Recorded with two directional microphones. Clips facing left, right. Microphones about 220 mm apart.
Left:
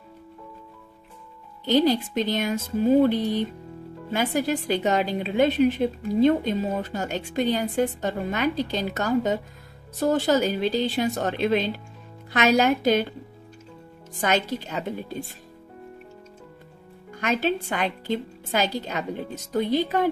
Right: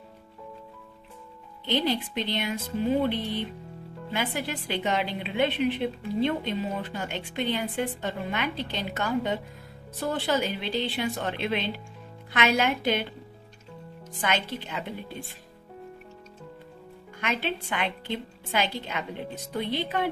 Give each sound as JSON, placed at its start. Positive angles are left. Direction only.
{"t": 1.7, "sound": "a woman's voice", "side_deg": 40}
{"t": 14.1, "sound": "a woman's voice", "side_deg": 40}
{"t": 17.2, "sound": "a woman's voice", "side_deg": 40}